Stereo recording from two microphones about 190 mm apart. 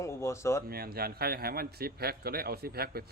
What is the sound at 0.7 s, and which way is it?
A man's voice, 55° right (ahead or behind).